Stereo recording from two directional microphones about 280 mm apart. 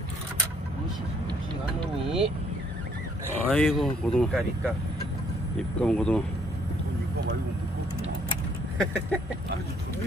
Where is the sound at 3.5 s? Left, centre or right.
Centre.